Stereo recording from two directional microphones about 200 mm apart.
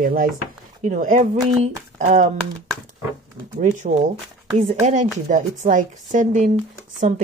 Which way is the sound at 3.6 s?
35° right (ahead or behind).